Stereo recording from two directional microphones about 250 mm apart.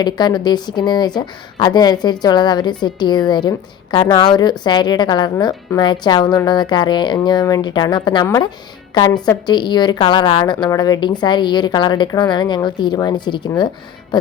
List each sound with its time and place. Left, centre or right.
0.0 s a woman's voice: centre